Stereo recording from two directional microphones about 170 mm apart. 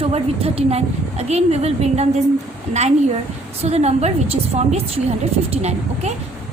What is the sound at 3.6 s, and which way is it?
A woman's voice, 40° right (ahead or behind).